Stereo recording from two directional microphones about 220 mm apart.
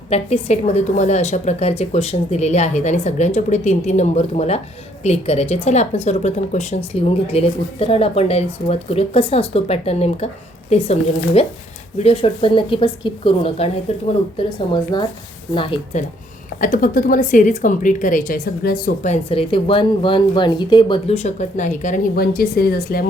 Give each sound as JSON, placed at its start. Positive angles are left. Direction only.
{"t": 0.1, "sound": "a woman's voice", "side_deg": 30}
{"t": 11.9, "sound": "speech", "side_deg": 25}
{"t": 16.6, "sound": "a woman's voice", "side_deg": 40}